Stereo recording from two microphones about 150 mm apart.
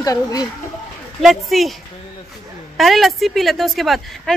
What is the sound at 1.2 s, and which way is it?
Speech, centre (ahead or behind).